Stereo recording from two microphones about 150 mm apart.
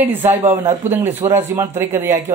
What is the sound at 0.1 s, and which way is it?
A man's voice, 15° right (ahead or behind).